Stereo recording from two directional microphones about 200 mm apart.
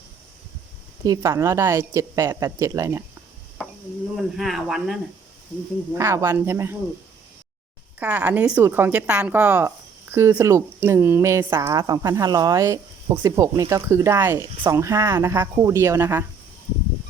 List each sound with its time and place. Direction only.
1.0 s a woman's voice: 15° right (ahead or behind)
4.2 s speech: centre (ahead or behind)
5.9 s a woman's voice: 15° right (ahead or behind)
7.9 s a woman's voice: 10° right (ahead or behind)